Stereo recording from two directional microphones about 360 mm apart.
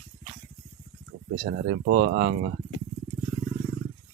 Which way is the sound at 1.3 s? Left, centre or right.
Right.